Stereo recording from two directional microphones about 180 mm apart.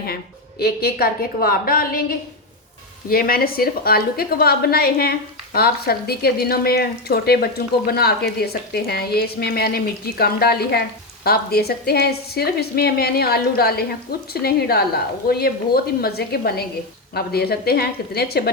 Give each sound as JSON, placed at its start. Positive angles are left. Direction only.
{"t": 0.6, "sound": "speech", "side_deg": 60}